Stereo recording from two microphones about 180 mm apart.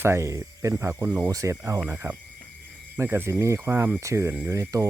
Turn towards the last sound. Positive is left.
turn(degrees=-15)  # may be behind; listen again after turning